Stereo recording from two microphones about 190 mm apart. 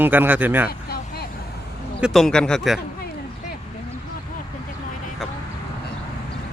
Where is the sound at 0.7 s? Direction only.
55° left (ahead or behind).